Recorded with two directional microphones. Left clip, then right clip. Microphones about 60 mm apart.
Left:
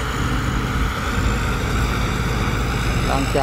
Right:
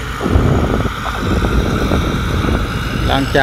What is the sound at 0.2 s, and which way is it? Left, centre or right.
Vehicle, centre.